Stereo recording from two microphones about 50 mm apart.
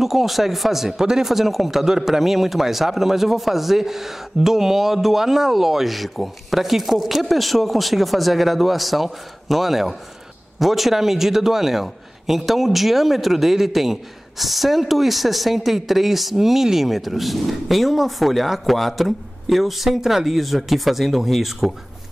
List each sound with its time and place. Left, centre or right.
0.0 s a man's voice: centre